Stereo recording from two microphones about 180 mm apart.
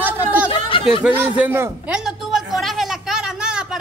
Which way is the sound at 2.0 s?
Centre (ahead or behind).